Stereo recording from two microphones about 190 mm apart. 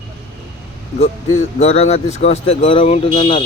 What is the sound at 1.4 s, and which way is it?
Speech, 35° left (ahead or behind).